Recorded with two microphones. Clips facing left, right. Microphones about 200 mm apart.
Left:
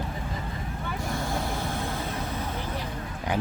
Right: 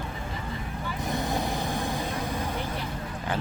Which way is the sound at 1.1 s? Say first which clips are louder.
Right 3 dB; 20° right (ahead or behind).